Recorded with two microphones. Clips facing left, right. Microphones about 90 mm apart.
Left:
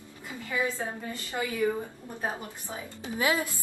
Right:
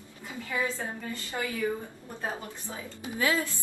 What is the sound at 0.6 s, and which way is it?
A woman's voice, 20° left (ahead or behind).